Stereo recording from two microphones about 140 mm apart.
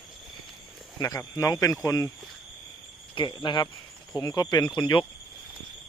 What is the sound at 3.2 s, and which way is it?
Speech, 35° left (ahead or behind).